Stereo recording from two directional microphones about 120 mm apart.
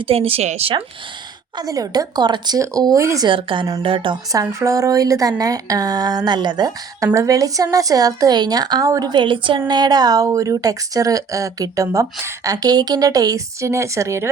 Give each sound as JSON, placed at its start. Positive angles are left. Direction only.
{"t": 0.0, "sound": "speech", "side_deg": -50}
{"t": 1.5, "sound": "speech", "side_deg": -30}
{"t": 3.2, "sound": "a woman's voice", "side_deg": -45}
{"t": 4.3, "sound": "a woman's voice", "side_deg": -25}